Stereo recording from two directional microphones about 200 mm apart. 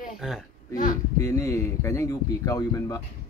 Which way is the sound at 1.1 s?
15° left (ahead or behind).